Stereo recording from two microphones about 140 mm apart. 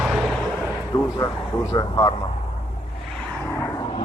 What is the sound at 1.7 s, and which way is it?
Speech, 25° left (ahead or behind).